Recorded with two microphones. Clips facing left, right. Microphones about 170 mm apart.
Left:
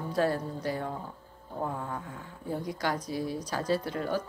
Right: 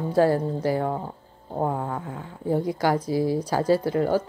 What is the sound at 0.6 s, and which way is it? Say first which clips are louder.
Speech: right 9 dB; 90° right.